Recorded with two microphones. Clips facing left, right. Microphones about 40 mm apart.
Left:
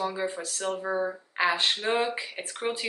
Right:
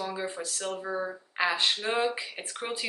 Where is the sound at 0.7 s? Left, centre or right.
Left.